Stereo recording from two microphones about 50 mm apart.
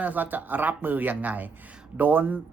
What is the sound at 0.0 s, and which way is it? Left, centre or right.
Speech, right.